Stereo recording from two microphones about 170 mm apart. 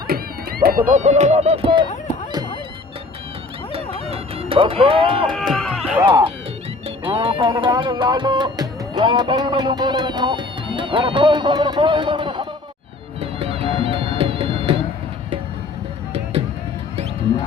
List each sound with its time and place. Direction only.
0.1 s music: 65° right (ahead or behind)
0.6 s speech: 55° right (ahead or behind); by 1.9 s 30° right (ahead or behind)
3.7 s music: 35° right (ahead or behind)
5.3 s speech: centre (ahead or behind)
7.0 s music: 30° right (ahead or behind)